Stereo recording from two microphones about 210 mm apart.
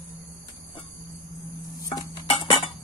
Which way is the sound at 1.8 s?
20° left (ahead or behind).